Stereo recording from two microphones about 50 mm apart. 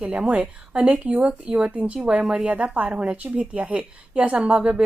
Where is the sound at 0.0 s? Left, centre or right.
Right.